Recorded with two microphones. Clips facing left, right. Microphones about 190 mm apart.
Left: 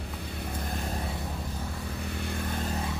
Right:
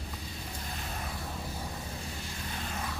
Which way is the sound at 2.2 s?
55° left (ahead or behind).